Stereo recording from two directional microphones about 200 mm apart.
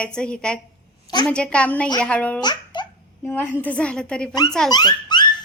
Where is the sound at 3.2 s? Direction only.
10° left (ahead or behind).